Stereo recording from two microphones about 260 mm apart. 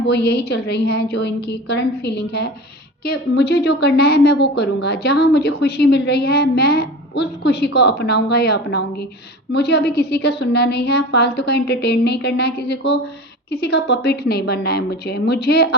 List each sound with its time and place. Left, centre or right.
0.0 s a woman's voice: left